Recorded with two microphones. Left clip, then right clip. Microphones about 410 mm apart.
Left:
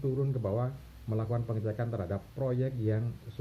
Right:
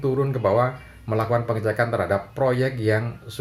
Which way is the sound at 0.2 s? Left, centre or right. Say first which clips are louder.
Right 14 dB; centre.